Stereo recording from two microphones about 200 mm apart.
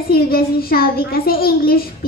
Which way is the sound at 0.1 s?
50° left (ahead or behind).